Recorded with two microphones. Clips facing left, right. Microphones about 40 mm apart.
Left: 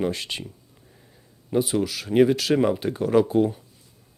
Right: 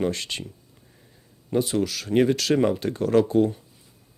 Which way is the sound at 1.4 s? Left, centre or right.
Centre.